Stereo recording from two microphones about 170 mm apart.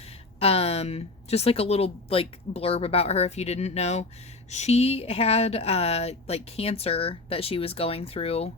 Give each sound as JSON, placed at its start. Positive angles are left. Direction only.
{"t": 0.3, "sound": "speech", "side_deg": 35}